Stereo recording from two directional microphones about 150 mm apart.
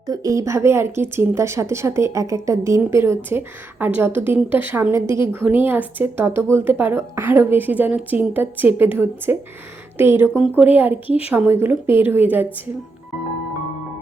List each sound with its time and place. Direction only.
0.1 s a woman's voice: 25° right (ahead or behind)